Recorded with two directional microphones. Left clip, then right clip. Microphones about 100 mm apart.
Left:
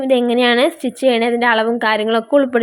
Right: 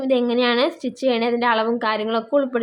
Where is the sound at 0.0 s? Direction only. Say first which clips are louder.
Left 5 dB; 40° left (ahead or behind).